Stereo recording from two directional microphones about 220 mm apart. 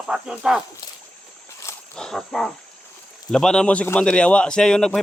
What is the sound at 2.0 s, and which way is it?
A man's voice, centre (ahead or behind).